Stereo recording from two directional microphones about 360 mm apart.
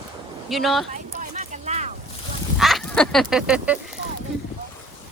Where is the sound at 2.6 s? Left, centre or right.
Centre.